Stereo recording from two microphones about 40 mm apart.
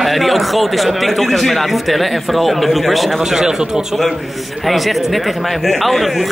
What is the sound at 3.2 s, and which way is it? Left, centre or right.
Speech, centre.